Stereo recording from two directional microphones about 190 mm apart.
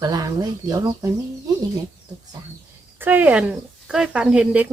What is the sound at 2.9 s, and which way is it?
Speech, 10° right (ahead or behind).